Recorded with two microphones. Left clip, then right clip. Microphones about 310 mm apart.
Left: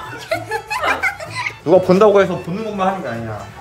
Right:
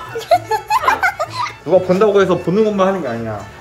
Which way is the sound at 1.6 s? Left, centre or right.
Left.